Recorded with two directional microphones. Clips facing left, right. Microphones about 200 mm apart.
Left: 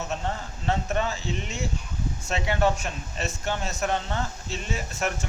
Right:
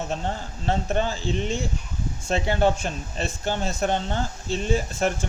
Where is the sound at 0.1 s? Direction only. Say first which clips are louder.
Right 2 dB; 30° right (ahead or behind).